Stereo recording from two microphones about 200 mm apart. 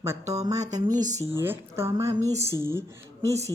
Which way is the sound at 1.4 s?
10° right (ahead or behind).